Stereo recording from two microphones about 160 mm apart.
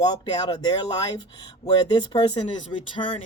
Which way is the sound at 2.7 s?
30° left (ahead or behind).